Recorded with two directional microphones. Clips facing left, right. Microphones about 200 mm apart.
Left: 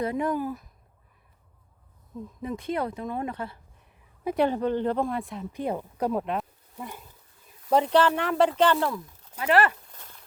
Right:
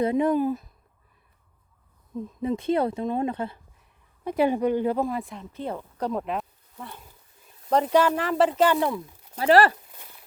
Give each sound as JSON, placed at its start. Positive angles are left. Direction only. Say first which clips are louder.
{"t": 0.0, "sound": "speech", "louder": "right 5 dB", "side_deg": -20}
{"t": 2.4, "sound": "speech", "louder": "right 6 dB", "side_deg": -25}
{"t": 4.4, "sound": "speech", "louder": "right 3 dB", "side_deg": -10}
{"t": 5.5, "sound": "speech", "louder": "left 2 dB", "side_deg": 15}
{"t": 6.7, "sound": "speech", "louder": "left 2 dB", "side_deg": 15}
{"t": 7.7, "sound": "speech", "louder": "right 1 dB", "side_deg": 0}
{"t": 9.3, "sound": "speech", "louder": "right 4 dB", "side_deg": -35}
{"t": 9.9, "sound": "a sound", "louder": "even", "side_deg": -10}